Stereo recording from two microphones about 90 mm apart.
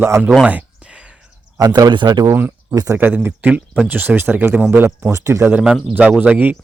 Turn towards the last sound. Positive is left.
turn(degrees=-15)  # may be behind; listen again after turning